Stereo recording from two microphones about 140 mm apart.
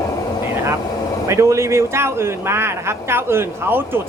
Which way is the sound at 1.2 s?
20° right (ahead or behind).